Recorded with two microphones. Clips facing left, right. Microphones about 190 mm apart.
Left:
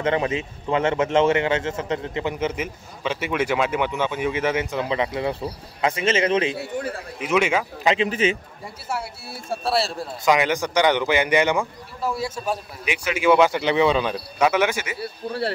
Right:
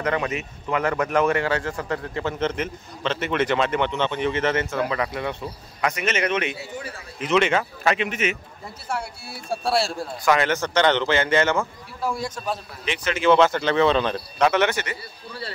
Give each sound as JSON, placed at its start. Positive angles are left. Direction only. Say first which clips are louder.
{"t": 0.0, "sound": "speech", "louder": "left 3 dB", "side_deg": 25}
{"t": 6.6, "sound": "speech", "louder": "left 6 dB", "side_deg": 55}
{"t": 7.2, "sound": "a man's voice", "louder": "right 1 dB", "side_deg": 10}
{"t": 7.9, "sound": "speech", "louder": "left 4 dB", "side_deg": 30}
{"t": 8.8, "sound": "a man's voice", "louder": "even", "side_deg": 5}
{"t": 10.2, "sound": "a man's voice", "louder": "left 1 dB", "side_deg": 15}
{"t": 15.0, "sound": "speech", "louder": "left 9 dB", "side_deg": 65}